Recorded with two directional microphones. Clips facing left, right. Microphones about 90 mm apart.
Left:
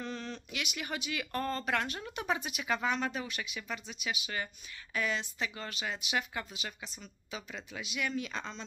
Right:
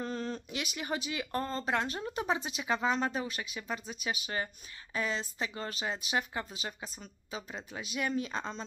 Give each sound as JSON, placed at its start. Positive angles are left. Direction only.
{"t": 0.0, "sound": "speech", "side_deg": -35}